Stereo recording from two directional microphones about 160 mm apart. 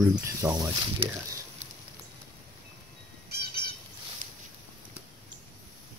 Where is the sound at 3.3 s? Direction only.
80° right.